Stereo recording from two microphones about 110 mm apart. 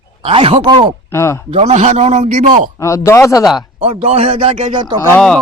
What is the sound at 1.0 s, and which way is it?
Speech, 25° left (ahead or behind).